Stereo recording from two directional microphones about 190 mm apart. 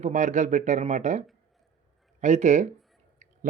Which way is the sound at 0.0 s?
40° right (ahead or behind).